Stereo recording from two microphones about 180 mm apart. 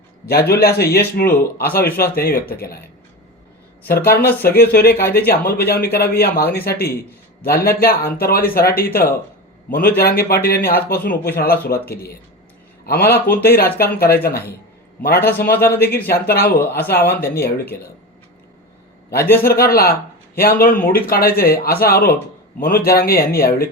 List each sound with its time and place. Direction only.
0.3 s speech: 60° left (ahead or behind)
4.0 s speech: 60° left (ahead or behind)
19.4 s speech: 55° left (ahead or behind)